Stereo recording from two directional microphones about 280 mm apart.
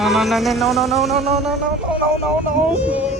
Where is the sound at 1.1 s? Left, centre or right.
Right.